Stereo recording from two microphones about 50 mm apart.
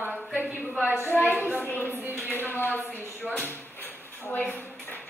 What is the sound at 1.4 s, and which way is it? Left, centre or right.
Speech, right.